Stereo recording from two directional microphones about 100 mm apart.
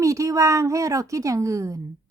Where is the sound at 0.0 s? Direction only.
35° right (ahead or behind).